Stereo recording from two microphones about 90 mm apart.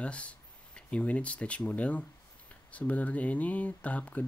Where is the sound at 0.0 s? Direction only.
15° left (ahead or behind).